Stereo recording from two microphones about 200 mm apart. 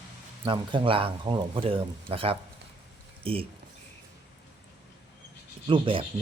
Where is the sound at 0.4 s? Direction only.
25° right (ahead or behind).